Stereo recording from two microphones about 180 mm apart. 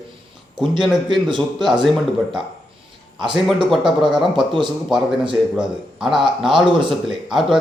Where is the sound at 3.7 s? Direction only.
5° right (ahead or behind).